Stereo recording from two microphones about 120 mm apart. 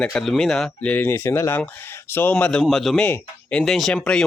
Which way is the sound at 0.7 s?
15° left (ahead or behind).